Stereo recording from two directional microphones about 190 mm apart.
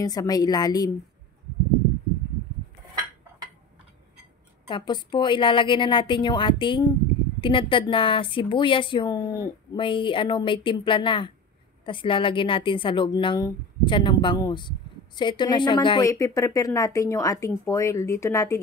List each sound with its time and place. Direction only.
0.0 s speech: 20° left (ahead or behind)
4.6 s a woman's voice: 25° left (ahead or behind)